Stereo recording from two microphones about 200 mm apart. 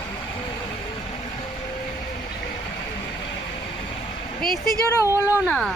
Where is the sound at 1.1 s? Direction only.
30° left (ahead or behind).